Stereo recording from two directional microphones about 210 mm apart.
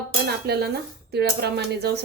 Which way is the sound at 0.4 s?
50° right (ahead or behind).